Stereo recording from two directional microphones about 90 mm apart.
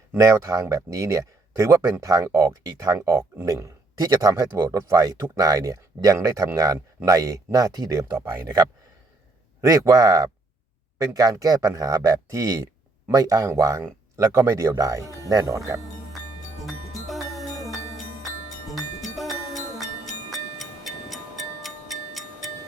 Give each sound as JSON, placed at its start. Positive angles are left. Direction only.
{"t": 0.1, "sound": "speech", "side_deg": -35}
{"t": 9.6, "sound": "speech", "side_deg": -40}
{"t": 17.1, "sound": "music", "side_deg": 0}
{"t": 20.3, "sound": "clock", "side_deg": 0}